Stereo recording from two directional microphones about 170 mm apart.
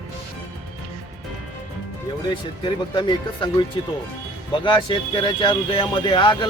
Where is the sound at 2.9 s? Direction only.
25° left (ahead or behind).